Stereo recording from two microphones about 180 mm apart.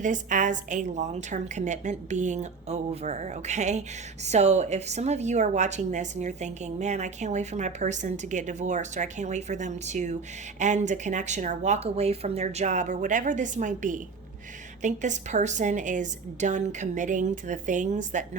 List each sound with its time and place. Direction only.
0.0 s a woman's voice: 45° right (ahead or behind)